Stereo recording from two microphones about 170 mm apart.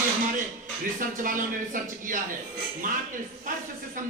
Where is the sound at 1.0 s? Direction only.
55° right (ahead or behind).